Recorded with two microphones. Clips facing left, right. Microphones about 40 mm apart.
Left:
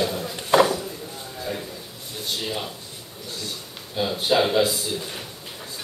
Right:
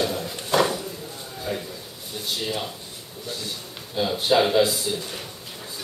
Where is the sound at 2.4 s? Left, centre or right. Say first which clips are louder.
Right 1 dB; centre.